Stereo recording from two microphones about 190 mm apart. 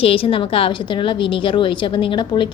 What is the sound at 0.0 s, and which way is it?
A woman's voice, 30° left (ahead or behind).